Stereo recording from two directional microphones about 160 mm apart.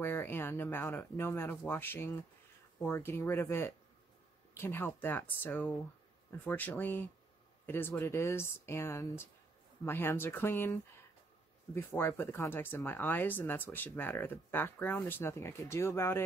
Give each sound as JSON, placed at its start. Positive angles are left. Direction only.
{"t": 0.0, "sound": "speech", "side_deg": 15}